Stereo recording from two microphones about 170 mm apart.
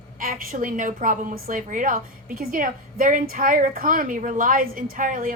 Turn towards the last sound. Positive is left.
turn(degrees=-55)  # may be behind; listen again after turning